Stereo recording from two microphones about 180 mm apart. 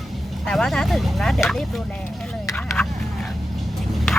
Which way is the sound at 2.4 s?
15° left (ahead or behind).